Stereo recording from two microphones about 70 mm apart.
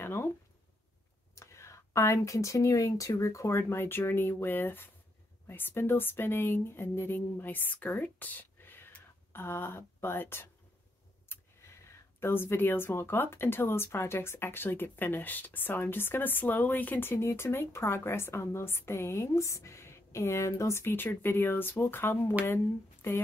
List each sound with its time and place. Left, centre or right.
0.0 s speech: left
1.3 s speech: left
11.3 s a sound: left
12.2 s speech: left